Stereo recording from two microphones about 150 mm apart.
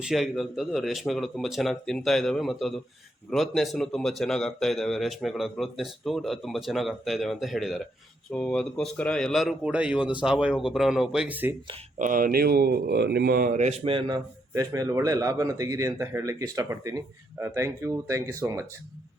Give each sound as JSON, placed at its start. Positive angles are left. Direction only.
{"t": 0.0, "sound": "speech", "side_deg": 0}
{"t": 11.9, "sound": "speech", "side_deg": -65}
{"t": 13.6, "sound": "speech", "side_deg": -40}
{"t": 14.1, "sound": "a man's voice", "side_deg": -20}